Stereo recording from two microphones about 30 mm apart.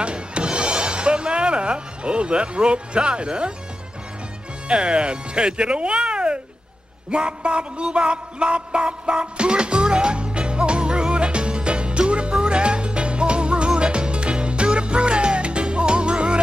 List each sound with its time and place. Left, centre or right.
0.0 s music: right
4.6 s speech: right
7.1 s music: right